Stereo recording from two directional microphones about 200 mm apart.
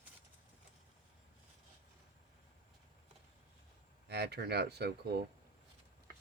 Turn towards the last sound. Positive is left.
turn(degrees=-55)  # may be behind; listen again after turning